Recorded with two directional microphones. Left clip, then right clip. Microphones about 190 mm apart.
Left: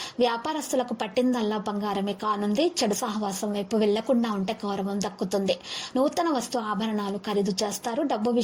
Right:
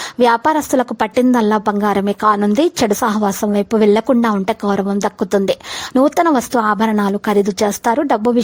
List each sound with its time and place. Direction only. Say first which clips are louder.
0.2 s a woman's voice: right 13 dB; 40° right (ahead or behind)